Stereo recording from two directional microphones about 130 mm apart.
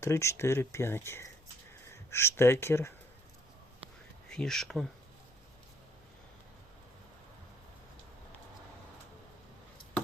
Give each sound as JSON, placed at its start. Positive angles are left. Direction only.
{"t": 0.0, "sound": "speech", "side_deg": 20}
{"t": 4.3, "sound": "speech", "side_deg": 5}